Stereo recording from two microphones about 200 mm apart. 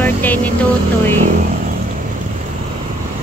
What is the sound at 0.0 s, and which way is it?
Music, 10° left (ahead or behind).